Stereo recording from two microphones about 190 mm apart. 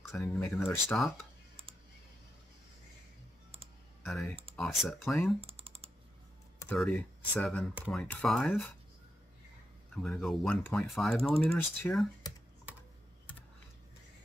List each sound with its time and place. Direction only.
0.1 s speech: 10° left (ahead or behind)
4.1 s speech: centre (ahead or behind)
5.4 s typing: 30° right (ahead or behind)
6.8 s speech: 5° left (ahead or behind)
10.0 s speech: centre (ahead or behind)